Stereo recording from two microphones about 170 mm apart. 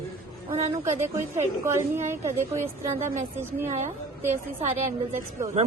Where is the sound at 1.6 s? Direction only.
15° right (ahead or behind).